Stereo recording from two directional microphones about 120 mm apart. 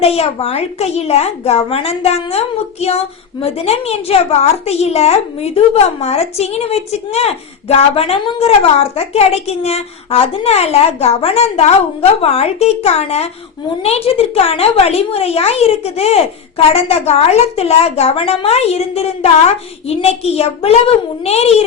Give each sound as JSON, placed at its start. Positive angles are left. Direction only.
{"t": 0.0, "sound": "a woman's voice", "side_deg": 55}
{"t": 3.4, "sound": "a woman's voice", "side_deg": 60}